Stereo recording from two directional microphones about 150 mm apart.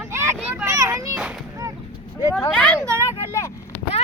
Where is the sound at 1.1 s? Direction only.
5° right (ahead or behind).